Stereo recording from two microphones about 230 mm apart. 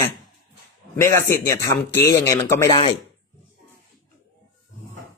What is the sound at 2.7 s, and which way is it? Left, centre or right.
Speech, left.